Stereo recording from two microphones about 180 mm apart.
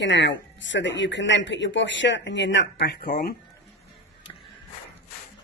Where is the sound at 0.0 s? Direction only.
75° left (ahead or behind); by 3.3 s 55° left (ahead or behind).